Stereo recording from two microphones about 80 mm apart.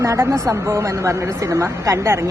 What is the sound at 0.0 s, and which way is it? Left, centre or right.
Speech, right.